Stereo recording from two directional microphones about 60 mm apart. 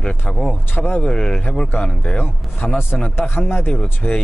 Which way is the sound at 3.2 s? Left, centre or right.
Left.